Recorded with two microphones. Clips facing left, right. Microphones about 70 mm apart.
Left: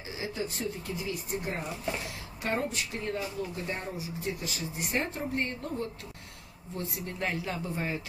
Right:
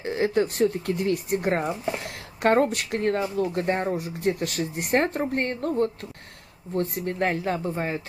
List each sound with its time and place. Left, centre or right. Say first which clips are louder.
0.0 s speech: right 12 dB; right
1.6 s speech: right 7 dB; right
2.0 s speech: right 11 dB; right